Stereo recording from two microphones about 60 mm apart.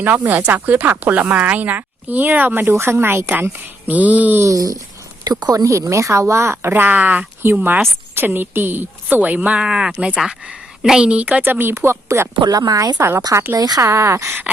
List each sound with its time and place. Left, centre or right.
0.4 s a woman's voice: right
2.7 s speech: right
4.4 s speech: right
9.6 s a woman's voice: centre
11.4 s speech: right
12.5 s speech: right
13.1 s speech: right
13.6 s speech: right
13.8 s speech: right